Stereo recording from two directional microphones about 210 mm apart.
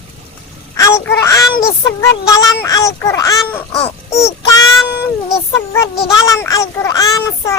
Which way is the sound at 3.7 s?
30° left (ahead or behind).